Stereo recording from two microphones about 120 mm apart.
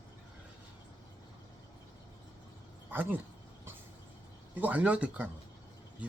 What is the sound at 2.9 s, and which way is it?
Speech, 15° right (ahead or behind).